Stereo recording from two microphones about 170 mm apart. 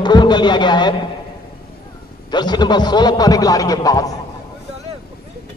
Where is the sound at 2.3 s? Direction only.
25° left (ahead or behind).